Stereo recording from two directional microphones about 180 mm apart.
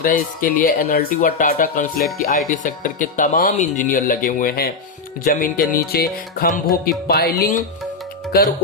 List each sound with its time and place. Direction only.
0.0 s speech: 50° left (ahead or behind)